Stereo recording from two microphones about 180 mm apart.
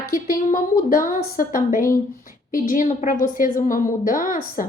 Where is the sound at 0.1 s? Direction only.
55° left (ahead or behind).